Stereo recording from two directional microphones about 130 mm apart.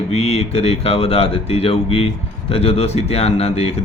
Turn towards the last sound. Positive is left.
turn(degrees=50)  # may be behind; listen again after turning